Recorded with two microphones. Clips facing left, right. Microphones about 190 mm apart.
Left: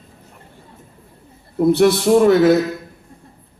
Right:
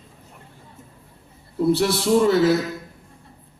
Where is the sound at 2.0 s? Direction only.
65° left (ahead or behind).